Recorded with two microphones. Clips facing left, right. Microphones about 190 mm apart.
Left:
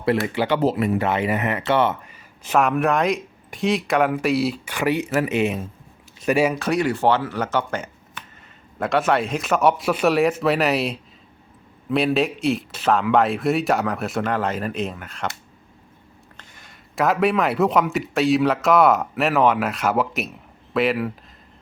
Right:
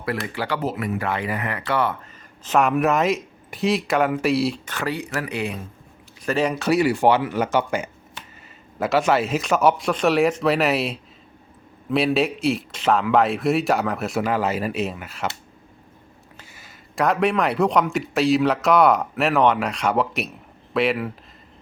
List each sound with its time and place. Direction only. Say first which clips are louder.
0.3 s speech: left 6 dB; 20° left (ahead or behind)
2.6 s a man's voice: even; centre (ahead or behind)
6.5 s a man's voice: right 2 dB; 5° right (ahead or behind)
16.4 s a man's voice: right 1 dB; 5° right (ahead or behind)